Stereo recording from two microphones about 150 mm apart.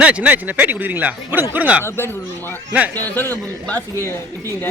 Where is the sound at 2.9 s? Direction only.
10° left (ahead or behind).